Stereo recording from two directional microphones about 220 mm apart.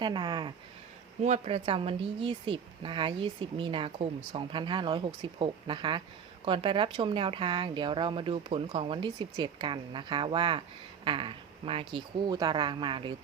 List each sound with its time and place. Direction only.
0.0 s speech: 20° right (ahead or behind)